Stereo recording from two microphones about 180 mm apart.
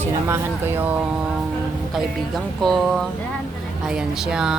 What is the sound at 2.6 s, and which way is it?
Speech, centre (ahead or behind).